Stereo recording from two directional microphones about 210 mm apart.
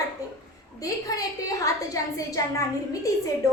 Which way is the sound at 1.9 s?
15° left (ahead or behind).